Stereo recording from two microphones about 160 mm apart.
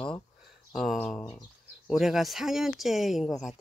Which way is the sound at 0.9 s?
5° left (ahead or behind).